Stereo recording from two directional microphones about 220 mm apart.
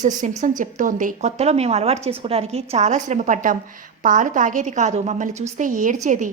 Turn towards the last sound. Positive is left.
turn(degrees=-35)  # may be behind; listen again after turning